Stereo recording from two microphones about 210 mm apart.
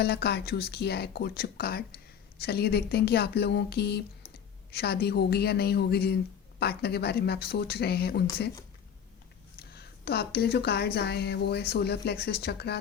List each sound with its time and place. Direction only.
0.0 s a woman's voice: 50° left (ahead or behind)
9.7 s a woman's voice: 50° left (ahead or behind)